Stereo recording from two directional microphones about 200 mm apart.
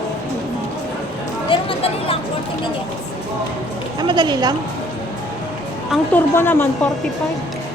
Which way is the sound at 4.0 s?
20° right (ahead or behind).